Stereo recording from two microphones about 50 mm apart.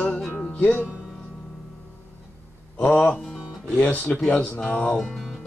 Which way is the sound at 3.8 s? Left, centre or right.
Left.